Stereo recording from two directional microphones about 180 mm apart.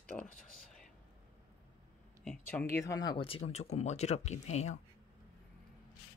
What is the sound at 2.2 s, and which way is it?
Speech, 10° left (ahead or behind).